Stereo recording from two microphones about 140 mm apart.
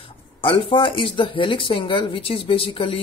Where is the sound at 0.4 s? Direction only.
40° left (ahead or behind).